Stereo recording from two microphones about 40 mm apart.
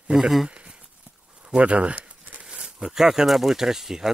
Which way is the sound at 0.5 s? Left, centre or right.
Right.